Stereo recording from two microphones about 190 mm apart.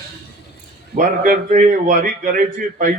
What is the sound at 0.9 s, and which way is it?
A man's voice, 45° right (ahead or behind).